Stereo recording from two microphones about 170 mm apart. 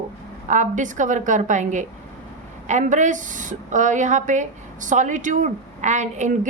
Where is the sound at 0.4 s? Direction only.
45° right (ahead or behind).